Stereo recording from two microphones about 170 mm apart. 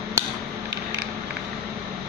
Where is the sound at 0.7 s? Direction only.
85° right.